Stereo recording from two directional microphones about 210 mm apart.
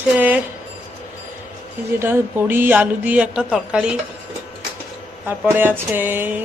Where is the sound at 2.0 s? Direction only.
10° right (ahead or behind).